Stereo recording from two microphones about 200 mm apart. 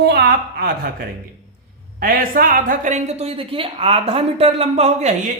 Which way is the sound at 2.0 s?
45° right (ahead or behind).